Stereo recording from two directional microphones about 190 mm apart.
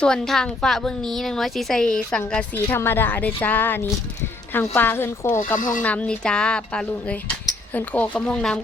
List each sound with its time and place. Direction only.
0.0 s a woman's voice: 5° left (ahead or behind)
5.5 s speech: 45° left (ahead or behind)
5.8 s a woman's voice: 5° left (ahead or behind)